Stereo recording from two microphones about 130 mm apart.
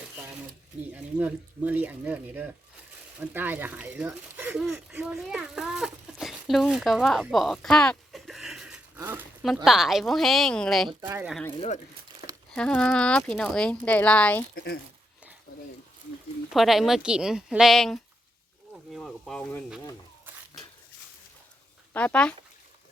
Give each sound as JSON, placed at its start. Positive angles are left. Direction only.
{"t": 0.9, "sound": "speech", "side_deg": -10}
{"t": 9.0, "sound": "a sound", "side_deg": -15}
{"t": 9.6, "sound": "speech", "side_deg": 0}
{"t": 11.0, "sound": "speech", "side_deg": -20}
{"t": 12.5, "sound": "speech", "side_deg": 10}
{"t": 16.5, "sound": "speech", "side_deg": 0}
{"t": 21.9, "sound": "speech", "side_deg": 10}